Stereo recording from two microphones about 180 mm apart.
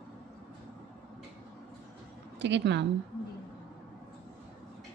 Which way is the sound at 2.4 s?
75° right (ahead or behind).